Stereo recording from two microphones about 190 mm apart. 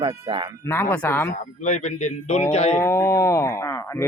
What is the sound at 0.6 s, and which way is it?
Speech, 10° left (ahead or behind).